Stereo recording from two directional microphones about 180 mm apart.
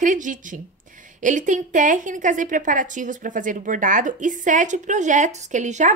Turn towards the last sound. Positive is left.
turn(degrees=-40)  # may be behind; listen again after turning